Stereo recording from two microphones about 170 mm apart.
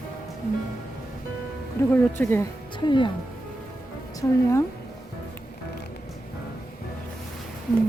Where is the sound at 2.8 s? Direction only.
30° left (ahead or behind).